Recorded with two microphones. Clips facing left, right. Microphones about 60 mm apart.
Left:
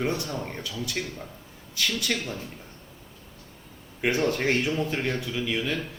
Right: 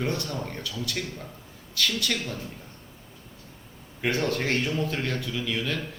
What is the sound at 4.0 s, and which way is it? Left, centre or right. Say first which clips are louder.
A man's voice: left 2 dB; centre.